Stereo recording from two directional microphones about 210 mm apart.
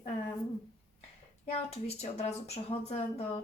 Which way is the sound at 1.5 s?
30° left (ahead or behind).